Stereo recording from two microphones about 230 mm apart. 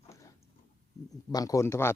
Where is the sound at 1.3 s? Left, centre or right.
Centre.